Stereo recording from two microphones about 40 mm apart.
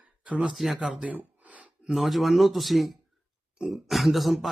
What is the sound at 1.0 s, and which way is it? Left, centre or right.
Gasp, right.